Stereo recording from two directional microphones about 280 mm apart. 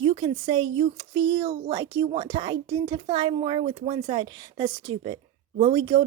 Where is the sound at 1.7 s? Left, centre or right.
Centre.